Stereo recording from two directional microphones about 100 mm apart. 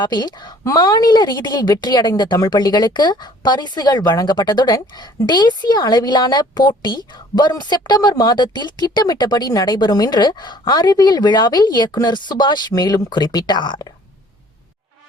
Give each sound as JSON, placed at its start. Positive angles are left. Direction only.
{"t": 0.0, "sound": "a woman's voice", "side_deg": 45}